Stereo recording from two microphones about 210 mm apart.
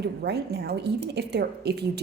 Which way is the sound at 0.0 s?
50° right (ahead or behind).